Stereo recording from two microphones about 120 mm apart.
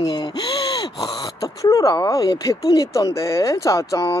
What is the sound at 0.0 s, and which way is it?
Speech, 35° left (ahead or behind).